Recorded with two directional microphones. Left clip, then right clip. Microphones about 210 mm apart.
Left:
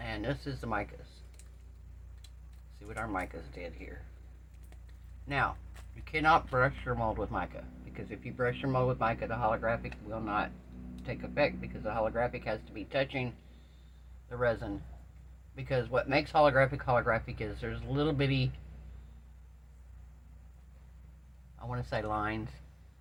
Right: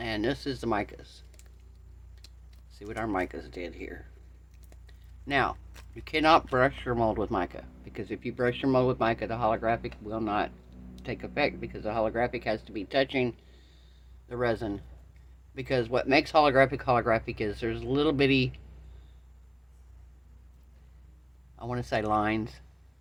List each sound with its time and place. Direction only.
0.0 s speech: 60° right (ahead or behind)
2.7 s speech: 55° right (ahead or behind)
5.3 s speech: 60° right (ahead or behind)
21.6 s speech: 60° right (ahead or behind)